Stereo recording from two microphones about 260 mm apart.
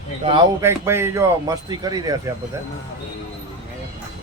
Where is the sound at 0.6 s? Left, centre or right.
Centre.